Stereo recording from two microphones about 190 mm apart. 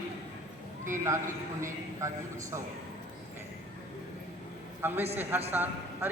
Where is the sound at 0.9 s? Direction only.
15° right (ahead or behind).